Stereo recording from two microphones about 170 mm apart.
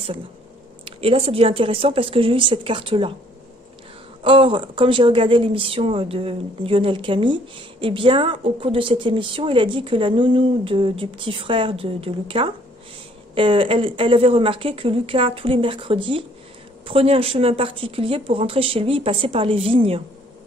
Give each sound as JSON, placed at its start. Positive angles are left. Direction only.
{"t": 0.8, "sound": "speech", "side_deg": -35}
{"t": 4.2, "sound": "speech", "side_deg": -30}